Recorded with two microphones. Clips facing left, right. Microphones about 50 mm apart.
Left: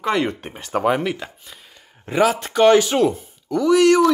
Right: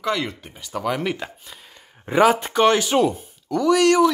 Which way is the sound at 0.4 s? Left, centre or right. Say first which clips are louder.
Left 6 dB; left.